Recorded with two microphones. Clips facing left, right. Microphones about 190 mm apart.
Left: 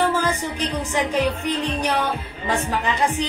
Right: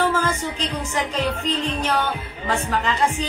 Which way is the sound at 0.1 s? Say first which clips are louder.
Even; 15° left (ahead or behind).